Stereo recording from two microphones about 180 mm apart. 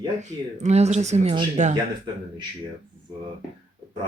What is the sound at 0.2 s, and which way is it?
Speech, 40° right (ahead or behind).